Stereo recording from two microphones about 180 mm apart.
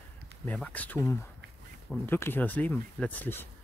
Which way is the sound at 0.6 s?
10° left (ahead or behind).